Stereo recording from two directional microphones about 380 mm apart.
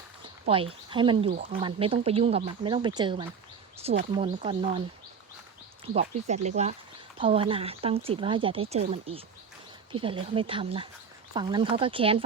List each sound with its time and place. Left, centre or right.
0.4 s speech: centre
5.8 s speech: centre